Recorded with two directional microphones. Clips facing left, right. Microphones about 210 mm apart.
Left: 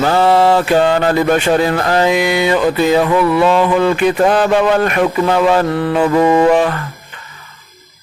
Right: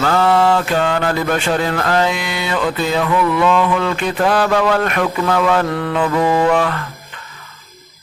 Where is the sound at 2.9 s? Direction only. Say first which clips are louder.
Left 4 dB; 25° left (ahead or behind).